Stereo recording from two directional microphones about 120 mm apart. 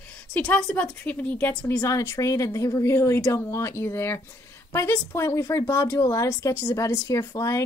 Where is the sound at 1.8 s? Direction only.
25° left (ahead or behind).